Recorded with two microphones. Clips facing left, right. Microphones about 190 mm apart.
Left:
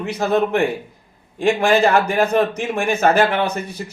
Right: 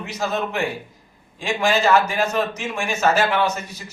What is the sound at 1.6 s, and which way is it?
A man's voice, 55° left (ahead or behind).